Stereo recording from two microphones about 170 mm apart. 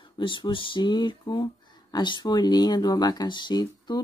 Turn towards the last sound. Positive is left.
turn(degrees=25)  # may be behind; listen again after turning